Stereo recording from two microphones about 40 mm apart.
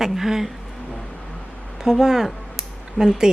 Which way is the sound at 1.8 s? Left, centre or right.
Centre.